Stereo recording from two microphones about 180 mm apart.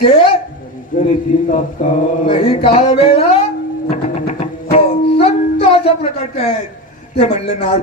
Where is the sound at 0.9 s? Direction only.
45° left (ahead or behind).